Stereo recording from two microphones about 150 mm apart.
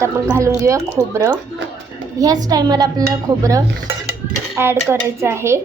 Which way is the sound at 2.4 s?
25° right (ahead or behind).